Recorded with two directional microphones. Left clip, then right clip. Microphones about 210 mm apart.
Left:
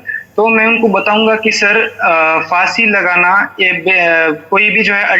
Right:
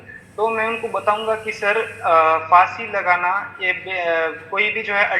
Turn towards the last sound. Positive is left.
turn(degrees=45)  # may be behind; listen again after turning